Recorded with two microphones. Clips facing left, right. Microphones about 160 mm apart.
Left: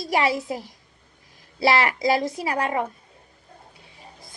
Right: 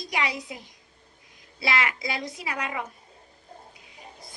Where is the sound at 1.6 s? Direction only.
40° left (ahead or behind).